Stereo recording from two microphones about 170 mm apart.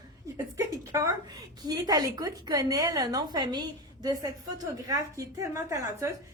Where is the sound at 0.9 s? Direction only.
20° right (ahead or behind).